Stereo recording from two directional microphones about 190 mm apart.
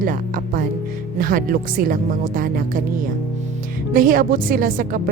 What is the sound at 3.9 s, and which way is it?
Speech, 50° right (ahead or behind).